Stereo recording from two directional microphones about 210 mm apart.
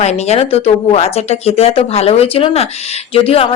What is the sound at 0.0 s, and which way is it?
Speech, 30° left (ahead or behind).